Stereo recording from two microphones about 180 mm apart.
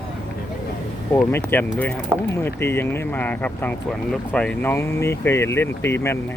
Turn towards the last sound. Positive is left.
turn(degrees=15)  # may be behind; listen again after turning